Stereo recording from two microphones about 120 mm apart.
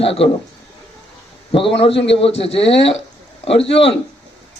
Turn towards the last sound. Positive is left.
turn(degrees=55)  # may be behind; listen again after turning